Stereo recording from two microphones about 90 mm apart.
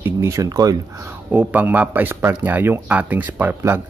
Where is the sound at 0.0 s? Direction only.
30° right (ahead or behind).